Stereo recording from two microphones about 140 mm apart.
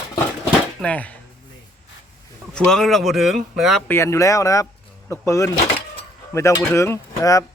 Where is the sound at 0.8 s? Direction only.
10° left (ahead or behind).